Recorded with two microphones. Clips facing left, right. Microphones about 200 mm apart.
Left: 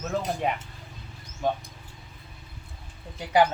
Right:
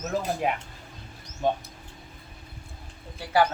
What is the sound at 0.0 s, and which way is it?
Speech, centre (ahead or behind).